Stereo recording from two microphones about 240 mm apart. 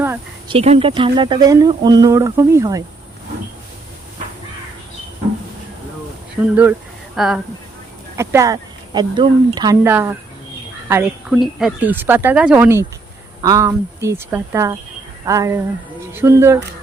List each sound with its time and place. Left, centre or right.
0.4 s speech: right
6.4 s speech: centre